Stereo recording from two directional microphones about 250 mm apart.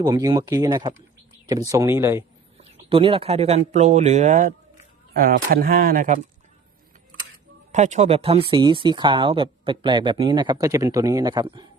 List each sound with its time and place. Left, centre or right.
0.0 s speech: centre
2.6 s speech: right
7.7 s speech: right